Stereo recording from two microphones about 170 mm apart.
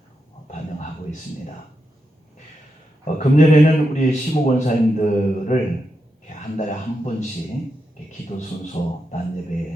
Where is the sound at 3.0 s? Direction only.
45° left (ahead or behind).